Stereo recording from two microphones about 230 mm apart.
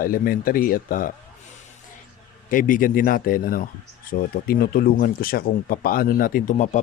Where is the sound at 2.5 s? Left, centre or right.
Left.